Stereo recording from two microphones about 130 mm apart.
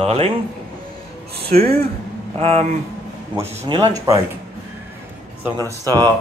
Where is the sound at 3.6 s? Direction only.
40° right (ahead or behind).